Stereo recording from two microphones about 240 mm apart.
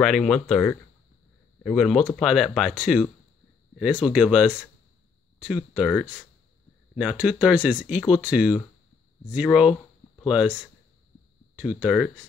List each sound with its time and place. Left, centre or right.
0.0 s speech: centre
5.8 s speech: centre